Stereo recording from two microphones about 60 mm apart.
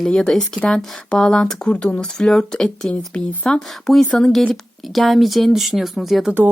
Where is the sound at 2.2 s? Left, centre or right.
Centre.